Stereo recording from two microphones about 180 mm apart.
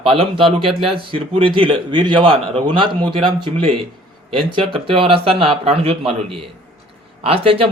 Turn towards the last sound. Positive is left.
turn(degrees=-30)  # may be behind; listen again after turning